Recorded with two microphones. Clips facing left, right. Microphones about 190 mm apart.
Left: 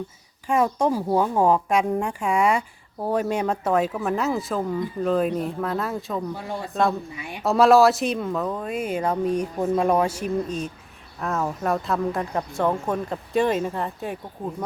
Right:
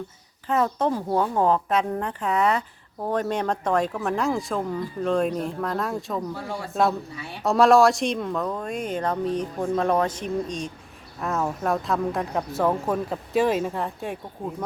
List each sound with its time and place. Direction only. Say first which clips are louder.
0.4 s speech: left 2 dB; 10° left (ahead or behind); by 6.9 s 5° right (ahead or behind)
7.2 s speech: left 1 dB; 15° left (ahead or behind)
7.4 s speech: left 1 dB; centre (ahead or behind)